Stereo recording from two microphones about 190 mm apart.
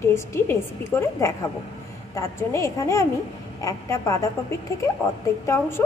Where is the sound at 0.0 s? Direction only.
15° left (ahead or behind).